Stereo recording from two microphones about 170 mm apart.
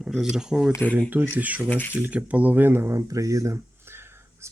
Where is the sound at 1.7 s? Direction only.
10° left (ahead or behind).